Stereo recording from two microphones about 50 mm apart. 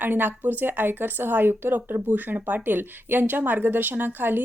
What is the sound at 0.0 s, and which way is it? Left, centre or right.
A woman's voice, right.